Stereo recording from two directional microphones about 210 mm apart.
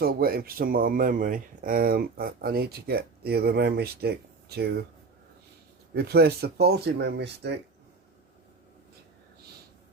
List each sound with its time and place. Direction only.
0.0 s speech: 45° right (ahead or behind)
5.9 s speech: 50° right (ahead or behind)